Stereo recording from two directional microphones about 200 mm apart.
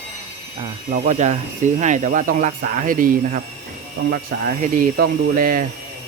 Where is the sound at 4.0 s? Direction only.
70° right (ahead or behind).